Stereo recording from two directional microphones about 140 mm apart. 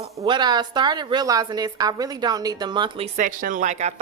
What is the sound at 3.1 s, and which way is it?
Speech, 70° right (ahead or behind).